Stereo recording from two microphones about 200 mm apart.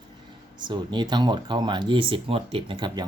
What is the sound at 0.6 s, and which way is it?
Speech, 20° right (ahead or behind).